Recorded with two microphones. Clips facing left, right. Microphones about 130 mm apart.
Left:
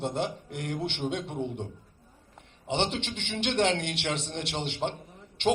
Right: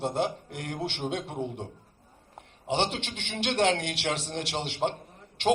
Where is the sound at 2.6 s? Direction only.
25° left (ahead or behind).